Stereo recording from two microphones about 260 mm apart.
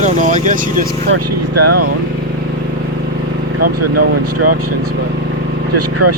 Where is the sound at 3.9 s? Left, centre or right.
Right.